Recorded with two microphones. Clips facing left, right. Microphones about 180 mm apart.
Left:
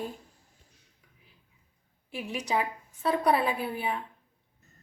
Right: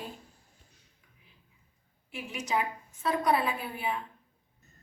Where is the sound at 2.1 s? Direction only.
35° left (ahead or behind).